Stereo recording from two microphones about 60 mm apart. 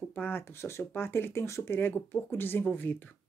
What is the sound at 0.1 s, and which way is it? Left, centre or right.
Speech, left.